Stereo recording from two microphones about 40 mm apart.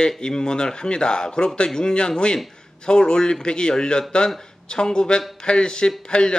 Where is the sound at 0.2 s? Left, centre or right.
Centre.